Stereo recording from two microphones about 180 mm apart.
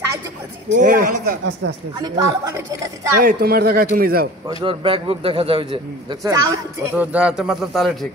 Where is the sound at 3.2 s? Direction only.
55° right (ahead or behind).